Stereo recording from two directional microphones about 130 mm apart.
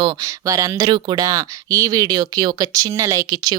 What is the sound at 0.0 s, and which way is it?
Speech, 25° right (ahead or behind).